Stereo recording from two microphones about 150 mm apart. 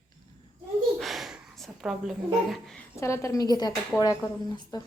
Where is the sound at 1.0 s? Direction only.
Centre (ahead or behind).